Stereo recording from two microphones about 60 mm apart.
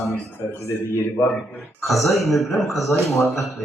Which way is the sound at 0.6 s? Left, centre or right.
Left.